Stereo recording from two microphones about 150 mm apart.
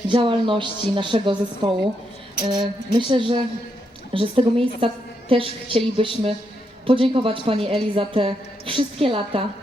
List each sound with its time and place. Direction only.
0.1 s a woman's voice: 35° right (ahead or behind)